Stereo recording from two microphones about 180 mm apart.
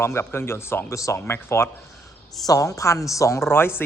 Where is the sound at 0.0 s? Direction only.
15° left (ahead or behind).